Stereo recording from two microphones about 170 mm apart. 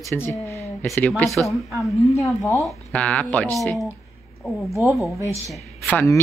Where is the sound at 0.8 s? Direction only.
Centre (ahead or behind).